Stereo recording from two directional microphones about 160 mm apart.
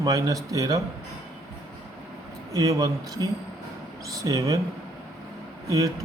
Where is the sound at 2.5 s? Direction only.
20° right (ahead or behind).